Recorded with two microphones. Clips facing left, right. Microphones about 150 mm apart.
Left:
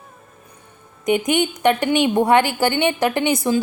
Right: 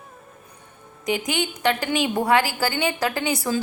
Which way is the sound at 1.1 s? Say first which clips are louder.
Left 6 dB; 25° left (ahead or behind).